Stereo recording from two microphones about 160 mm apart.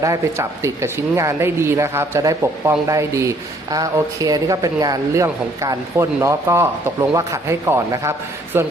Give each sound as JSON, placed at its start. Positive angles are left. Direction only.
{"t": 0.0, "sound": "speech", "side_deg": -20}